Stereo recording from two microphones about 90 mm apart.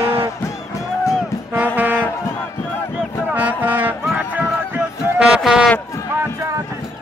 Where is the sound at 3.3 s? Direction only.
15° right (ahead or behind).